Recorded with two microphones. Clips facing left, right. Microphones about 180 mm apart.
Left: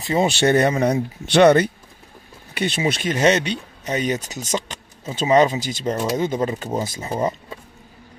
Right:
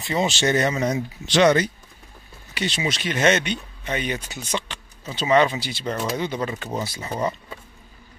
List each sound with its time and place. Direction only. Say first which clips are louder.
0.0 s speech: left 4 dB; 40° left (ahead or behind)
0.3 s speech: left 4 dB; 60° left (ahead or behind)
3.2 s speech: left 1 dB; 35° left (ahead or behind)
7.0 s speech: left 3 dB; 25° left (ahead or behind)